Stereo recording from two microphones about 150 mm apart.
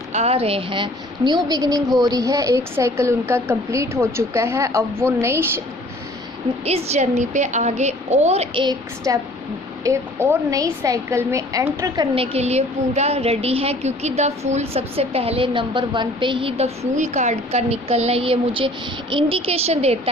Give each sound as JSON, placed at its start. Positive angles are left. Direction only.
{"t": 0.1, "sound": "a woman's voice", "side_deg": -45}
{"t": 6.7, "sound": "a woman's voice", "side_deg": -45}
{"t": 9.1, "sound": "a woman's voice", "side_deg": -25}
{"t": 12.1, "sound": "a woman's voice", "side_deg": -40}